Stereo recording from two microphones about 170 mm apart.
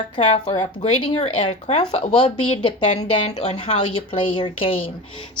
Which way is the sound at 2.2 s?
30° left (ahead or behind).